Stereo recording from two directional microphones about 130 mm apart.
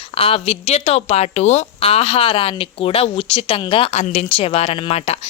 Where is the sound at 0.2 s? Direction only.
45° left (ahead or behind).